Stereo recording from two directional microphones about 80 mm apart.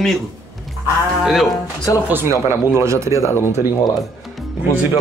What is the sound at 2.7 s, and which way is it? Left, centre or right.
Speech, right.